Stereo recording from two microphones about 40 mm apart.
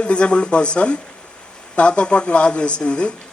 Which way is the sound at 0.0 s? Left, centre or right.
Left.